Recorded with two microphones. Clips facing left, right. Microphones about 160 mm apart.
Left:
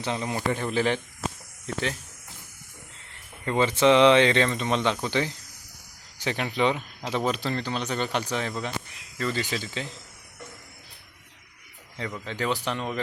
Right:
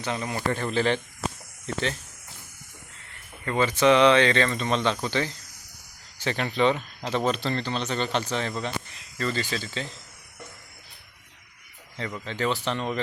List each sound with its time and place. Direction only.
0.0 s speech: 20° left (ahead or behind)
3.4 s speech: 20° left (ahead or behind)
11.9 s speech: 5° left (ahead or behind)